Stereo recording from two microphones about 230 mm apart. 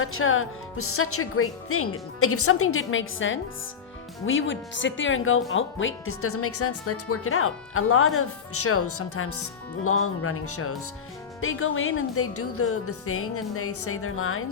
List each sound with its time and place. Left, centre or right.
0.0 s speech: left
11.3 s speech: left